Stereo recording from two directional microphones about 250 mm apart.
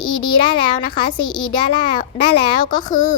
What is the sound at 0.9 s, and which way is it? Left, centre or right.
Speech, centre.